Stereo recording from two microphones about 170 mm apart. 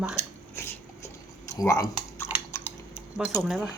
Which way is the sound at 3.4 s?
5° right (ahead or behind).